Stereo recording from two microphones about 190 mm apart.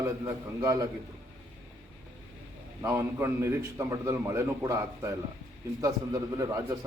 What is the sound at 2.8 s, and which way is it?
A man's voice, 15° right (ahead or behind).